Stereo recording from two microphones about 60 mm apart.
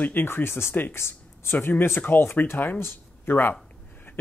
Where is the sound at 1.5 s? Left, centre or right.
Left.